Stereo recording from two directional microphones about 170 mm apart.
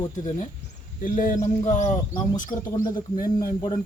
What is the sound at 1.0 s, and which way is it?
Speech, 55° left (ahead or behind).